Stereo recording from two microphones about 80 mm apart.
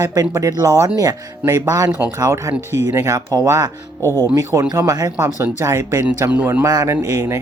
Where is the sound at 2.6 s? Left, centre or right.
Right.